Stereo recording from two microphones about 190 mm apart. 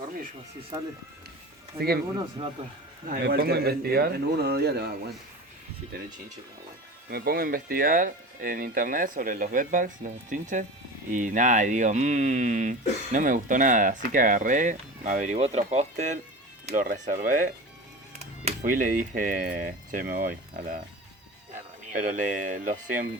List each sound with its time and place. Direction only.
1.7 s speech: 15° right (ahead or behind)
2.6 s speech: 30° right (ahead or behind)
3.1 s speech: 50° right (ahead or behind)
7.1 s speech: 50° right (ahead or behind)
21.9 s speech: 45° right (ahead or behind)